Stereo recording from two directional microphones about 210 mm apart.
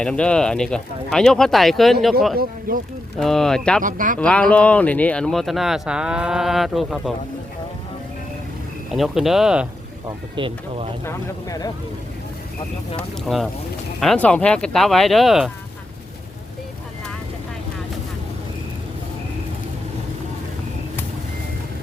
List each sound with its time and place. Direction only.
0.0 s speech: 5° left (ahead or behind)
2.4 s speech: 45° right (ahead or behind)
3.2 s speech: centre (ahead or behind)
3.8 s speech: 40° right (ahead or behind)
4.2 s speech: 5° left (ahead or behind)
8.9 s speech: centre (ahead or behind)
10.3 s speech: 25° right (ahead or behind)
11.0 s speech: 15° left (ahead or behind)
13.0 s speech: centre (ahead or behind)